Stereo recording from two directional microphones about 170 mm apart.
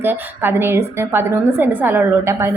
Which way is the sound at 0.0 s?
10° right (ahead or behind).